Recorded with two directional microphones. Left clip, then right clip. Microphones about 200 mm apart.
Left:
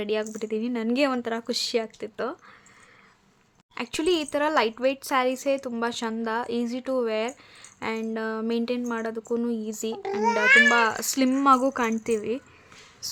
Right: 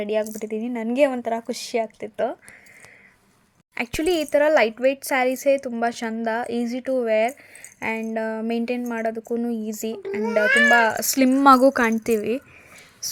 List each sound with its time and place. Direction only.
0.0 s a woman's voice: centre (ahead or behind)
3.8 s speech: 15° right (ahead or behind)
10.4 s a woman's voice: 5° left (ahead or behind)
10.8 s speech: 15° right (ahead or behind)
11.4 s a woman's voice: 25° right (ahead or behind)